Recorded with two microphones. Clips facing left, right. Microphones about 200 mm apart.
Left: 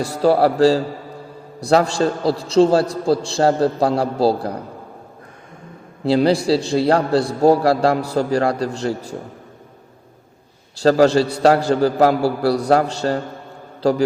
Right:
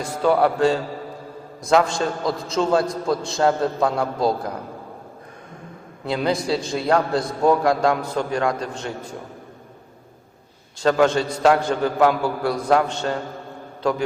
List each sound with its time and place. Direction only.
0.0 s a man's voice: 35° left (ahead or behind)
6.1 s a man's voice: 30° left (ahead or behind)
10.8 s a man's voice: 35° left (ahead or behind)